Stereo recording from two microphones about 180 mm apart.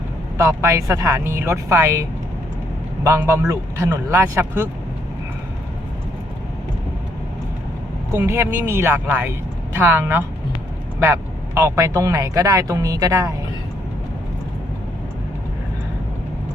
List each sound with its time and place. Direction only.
0.3 s speech: 15° right (ahead or behind)
8.1 s speech: 15° right (ahead or behind)